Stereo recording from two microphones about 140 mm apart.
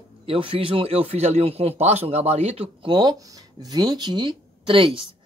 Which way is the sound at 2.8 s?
30° right (ahead or behind).